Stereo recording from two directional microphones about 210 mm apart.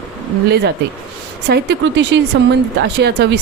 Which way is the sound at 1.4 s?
55° right (ahead or behind).